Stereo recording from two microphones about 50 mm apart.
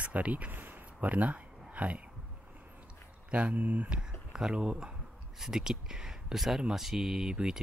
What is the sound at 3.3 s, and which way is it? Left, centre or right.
Speech, right.